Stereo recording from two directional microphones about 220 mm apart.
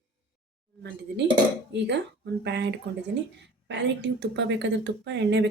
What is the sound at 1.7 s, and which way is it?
A woman's voice, 50° right (ahead or behind).